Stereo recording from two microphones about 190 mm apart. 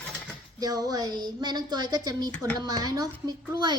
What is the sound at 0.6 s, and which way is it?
A child's voice, 20° right (ahead or behind).